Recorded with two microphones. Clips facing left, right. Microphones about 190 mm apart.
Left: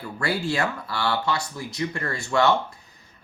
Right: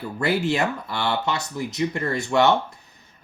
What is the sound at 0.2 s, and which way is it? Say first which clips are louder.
Speech: right 3 dB; 20° right (ahead or behind).